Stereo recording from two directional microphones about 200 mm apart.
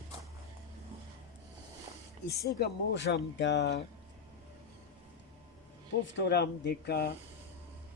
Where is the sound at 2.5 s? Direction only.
60° left (ahead or behind).